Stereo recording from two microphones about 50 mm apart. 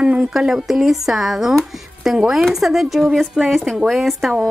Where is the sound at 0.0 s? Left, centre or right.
Right.